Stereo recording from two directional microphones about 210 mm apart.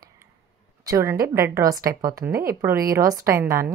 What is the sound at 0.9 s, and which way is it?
A woman's voice, 15° right (ahead or behind).